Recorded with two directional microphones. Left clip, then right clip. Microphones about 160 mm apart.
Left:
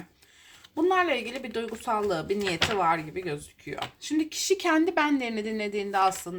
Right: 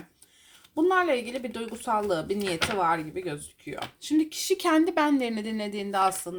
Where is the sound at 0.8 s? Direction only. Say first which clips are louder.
Right 1 dB; 30° right (ahead or behind).